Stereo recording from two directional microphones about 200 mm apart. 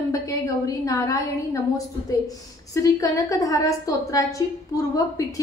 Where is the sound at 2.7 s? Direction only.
15° left (ahead or behind).